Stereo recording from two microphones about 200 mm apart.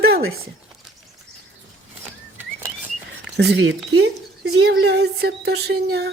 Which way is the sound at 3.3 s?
65° right (ahead or behind).